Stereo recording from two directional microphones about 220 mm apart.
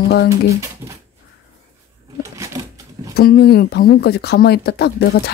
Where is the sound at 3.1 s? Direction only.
45° left (ahead or behind).